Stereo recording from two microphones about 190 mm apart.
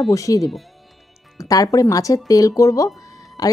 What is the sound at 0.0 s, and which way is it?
Speech, 20° left (ahead or behind).